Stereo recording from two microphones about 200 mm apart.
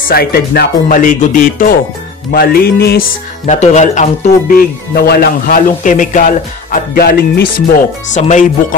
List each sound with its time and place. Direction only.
0.1 s speech: 50° left (ahead or behind)
3.4 s speech: 35° left (ahead or behind)